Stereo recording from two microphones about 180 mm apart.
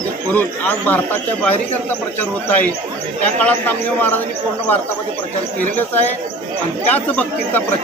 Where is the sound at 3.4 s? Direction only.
10° left (ahead or behind).